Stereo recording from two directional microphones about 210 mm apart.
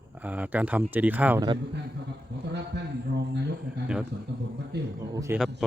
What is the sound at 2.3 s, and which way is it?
Speech, 55° right (ahead or behind).